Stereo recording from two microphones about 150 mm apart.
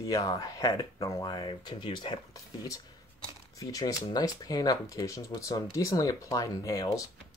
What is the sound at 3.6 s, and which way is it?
Speech, 25° left (ahead or behind).